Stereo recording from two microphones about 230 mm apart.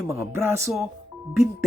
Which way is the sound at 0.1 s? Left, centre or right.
Centre.